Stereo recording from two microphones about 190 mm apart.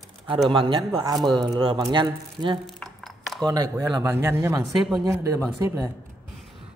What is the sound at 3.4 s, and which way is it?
Speech, 20° right (ahead or behind).